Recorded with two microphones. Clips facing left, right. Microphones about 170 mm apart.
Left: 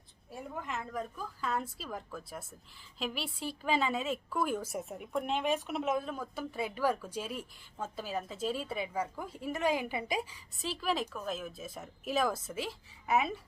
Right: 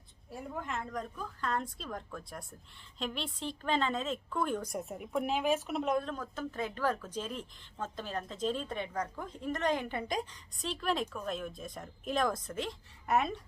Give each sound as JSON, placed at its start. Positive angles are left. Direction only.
{"t": 0.3, "sound": "a woman's voice", "side_deg": 0}